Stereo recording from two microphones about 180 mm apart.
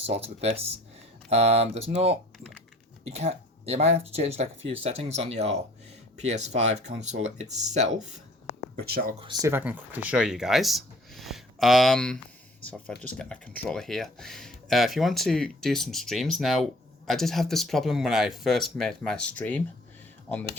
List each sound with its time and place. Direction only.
0.0 s speech: 35° right (ahead or behind)
8.7 s speech: 55° right (ahead or behind)
9.1 s speech: 25° right (ahead or behind)
9.5 s speech: 10° right (ahead or behind); by 20.4 s 10° left (ahead or behind)